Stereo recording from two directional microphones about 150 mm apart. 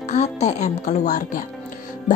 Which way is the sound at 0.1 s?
50° left (ahead or behind).